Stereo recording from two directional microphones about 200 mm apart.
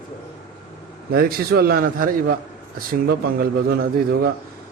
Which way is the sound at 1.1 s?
50° right (ahead or behind).